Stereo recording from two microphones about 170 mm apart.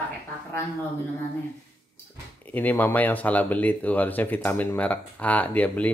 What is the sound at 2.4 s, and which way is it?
Speech, 10° left (ahead or behind).